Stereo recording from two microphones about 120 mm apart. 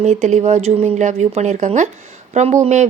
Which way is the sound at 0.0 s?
75° right (ahead or behind).